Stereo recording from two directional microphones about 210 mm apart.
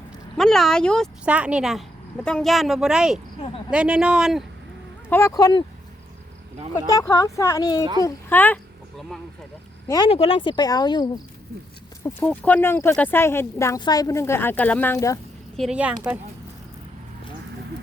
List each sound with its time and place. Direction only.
0.3 s speech: centre (ahead or behind)
5.0 s speech: 10° left (ahead or behind)
6.7 s speech: 15° left (ahead or behind)
9.8 s speech: 20° left (ahead or behind)
12.2 s speech: 10° left (ahead or behind)
15.5 s speech: 5° right (ahead or behind)